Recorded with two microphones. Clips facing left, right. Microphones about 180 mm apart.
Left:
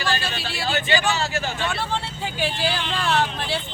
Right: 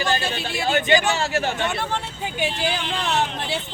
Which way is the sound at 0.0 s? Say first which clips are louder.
Right 3 dB; 20° right (ahead or behind).